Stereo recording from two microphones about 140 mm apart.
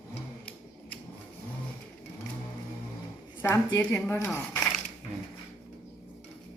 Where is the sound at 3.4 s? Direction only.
20° left (ahead or behind).